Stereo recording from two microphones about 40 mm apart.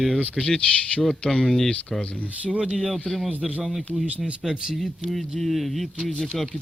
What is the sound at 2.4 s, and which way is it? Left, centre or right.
Speech, right.